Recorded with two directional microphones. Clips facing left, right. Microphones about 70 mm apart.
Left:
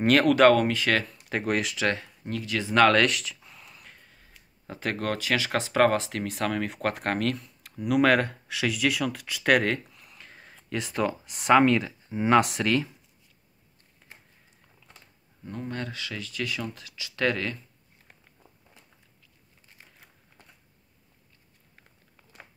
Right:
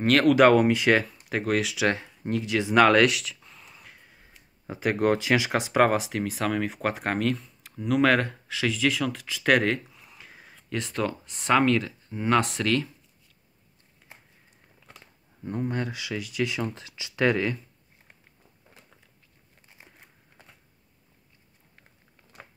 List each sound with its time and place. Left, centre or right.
0.0 s speech: centre
0.5 s speech: centre
1.0 s speech: centre
1.9 s speech: centre
15.6 s speech: centre